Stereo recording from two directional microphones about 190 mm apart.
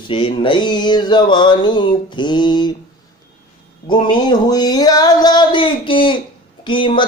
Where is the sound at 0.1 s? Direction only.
25° left (ahead or behind).